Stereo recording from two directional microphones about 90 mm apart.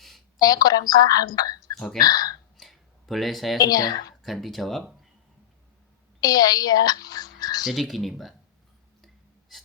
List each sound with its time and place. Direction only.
0.3 s a woman's voice: 45° left (ahead or behind)
2.6 s a sound: centre (ahead or behind)
3.6 s a woman's voice: 45° left (ahead or behind)
4.2 s speech: centre (ahead or behind)
6.1 s speech: 45° left (ahead or behind)
7.6 s speech: centre (ahead or behind)